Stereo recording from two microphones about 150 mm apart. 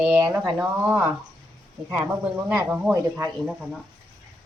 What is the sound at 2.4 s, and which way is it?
Speech, 5° right (ahead or behind).